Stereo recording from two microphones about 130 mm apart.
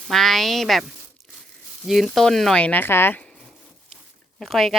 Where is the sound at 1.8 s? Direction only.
Centre (ahead or behind); by 3.2 s 15° left (ahead or behind).